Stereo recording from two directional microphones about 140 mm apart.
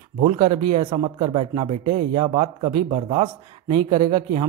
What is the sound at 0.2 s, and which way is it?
Speech, 45° right (ahead or behind).